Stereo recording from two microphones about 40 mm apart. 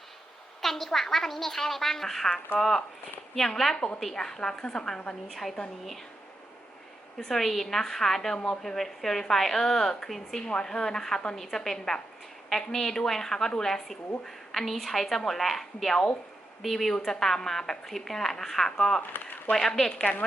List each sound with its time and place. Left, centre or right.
0.6 s a woman's voice: centre
5.3 s a woman's voice: centre
7.2 s a woman's voice: centre